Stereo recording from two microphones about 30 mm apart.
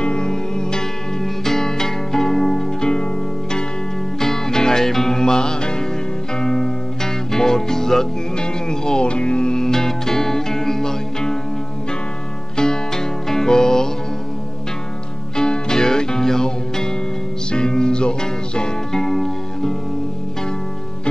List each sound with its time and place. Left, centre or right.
0.0 s music: left
1.2 s music: centre
4.2 s music: centre
8.4 s music: left
9.0 s music: left
9.6 s music: centre
12.5 s music: left
15.3 s music: left